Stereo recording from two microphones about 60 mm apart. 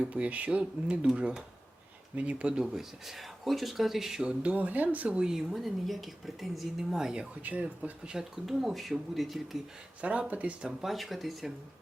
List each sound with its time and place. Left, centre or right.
0.0 s speech: right
2.7 s speech: centre
4.3 s speech: right
5.0 s speech: centre
7.4 s speech: right
8.1 s speech: centre
10.0 s speech: right
10.6 s speech: centre